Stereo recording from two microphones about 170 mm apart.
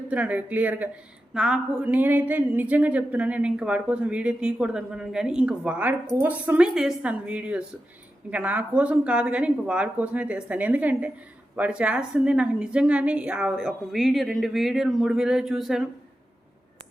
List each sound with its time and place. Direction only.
0.1 s a woman's voice: 10° right (ahead or behind)